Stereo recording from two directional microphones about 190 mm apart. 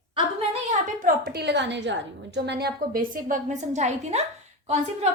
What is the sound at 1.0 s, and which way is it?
A woman's voice, 55° right (ahead or behind).